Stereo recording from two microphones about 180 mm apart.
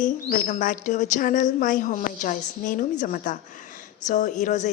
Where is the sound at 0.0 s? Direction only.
45° left (ahead or behind).